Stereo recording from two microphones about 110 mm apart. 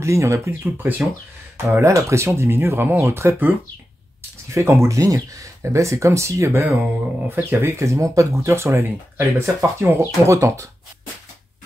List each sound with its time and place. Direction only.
0.0 s speech: 25° right (ahead or behind)